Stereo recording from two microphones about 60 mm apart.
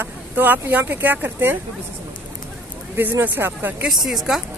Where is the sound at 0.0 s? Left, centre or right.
Right.